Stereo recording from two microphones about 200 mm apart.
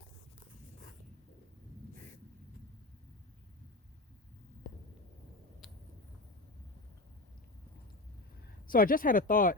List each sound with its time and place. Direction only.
8.6 s speech: 45° left (ahead or behind)